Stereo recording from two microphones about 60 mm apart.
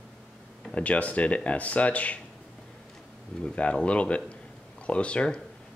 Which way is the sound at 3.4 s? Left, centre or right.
Centre.